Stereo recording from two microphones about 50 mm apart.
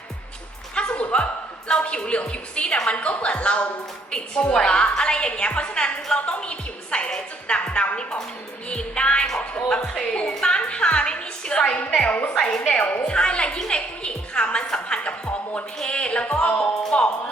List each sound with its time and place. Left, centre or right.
0.8 s music: left
2.8 s a woman's voice: left
8.7 s music: left
9.6 s a woman's voice: centre; by 12.3 s left
12.3 s a woman's voice: centre
12.8 s a woman's voice: left
13.1 s a woman's voice: centre
15.8 s music: left